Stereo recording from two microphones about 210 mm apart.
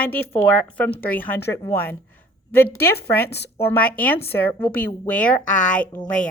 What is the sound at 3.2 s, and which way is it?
Speech, 55° left (ahead or behind).